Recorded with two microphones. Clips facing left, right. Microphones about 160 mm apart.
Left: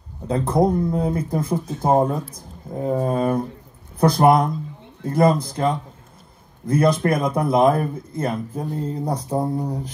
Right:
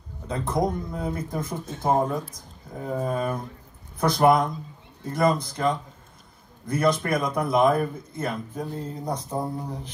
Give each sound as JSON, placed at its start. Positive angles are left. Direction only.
{"t": 0.3, "sound": "speech", "side_deg": 30}